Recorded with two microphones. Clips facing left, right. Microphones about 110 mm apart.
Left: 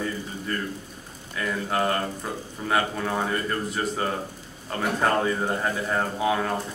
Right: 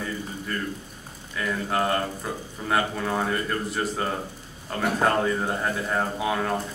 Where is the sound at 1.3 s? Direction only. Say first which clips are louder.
Even; centre (ahead or behind).